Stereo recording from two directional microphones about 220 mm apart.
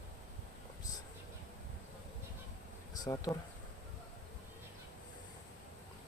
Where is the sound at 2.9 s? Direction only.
15° left (ahead or behind).